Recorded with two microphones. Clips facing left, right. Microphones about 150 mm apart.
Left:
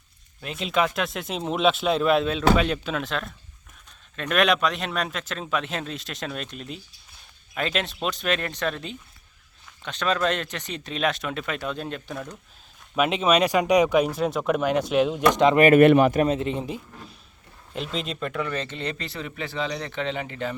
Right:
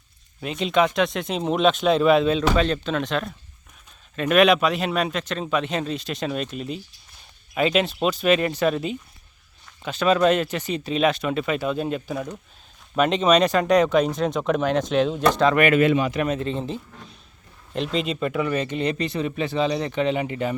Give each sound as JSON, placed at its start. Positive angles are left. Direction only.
{"t": 0.4, "sound": "speech", "side_deg": 0}
{"t": 13.0, "sound": "speech", "side_deg": 5}
{"t": 15.7, "sound": "speech", "side_deg": 60}
{"t": 16.2, "sound": "speech", "side_deg": 25}
{"t": 17.7, "sound": "speech", "side_deg": 0}